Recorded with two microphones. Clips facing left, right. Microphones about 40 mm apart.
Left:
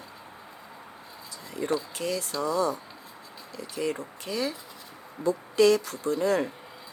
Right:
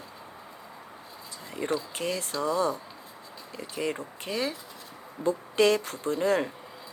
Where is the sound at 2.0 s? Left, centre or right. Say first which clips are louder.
Left 1 dB; right.